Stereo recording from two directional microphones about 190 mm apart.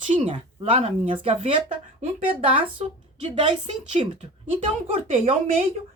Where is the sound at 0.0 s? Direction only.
40° right (ahead or behind).